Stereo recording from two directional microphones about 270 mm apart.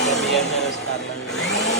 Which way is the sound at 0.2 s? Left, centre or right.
Centre.